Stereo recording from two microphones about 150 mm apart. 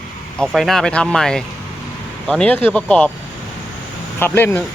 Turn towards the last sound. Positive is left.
turn(degrees=15)  # may be behind; listen again after turning